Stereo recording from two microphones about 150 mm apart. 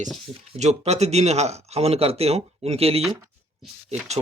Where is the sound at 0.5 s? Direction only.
45° right (ahead or behind).